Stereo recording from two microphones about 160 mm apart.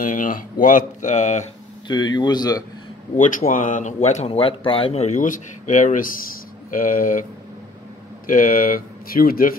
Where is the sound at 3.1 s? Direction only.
55° left (ahead or behind).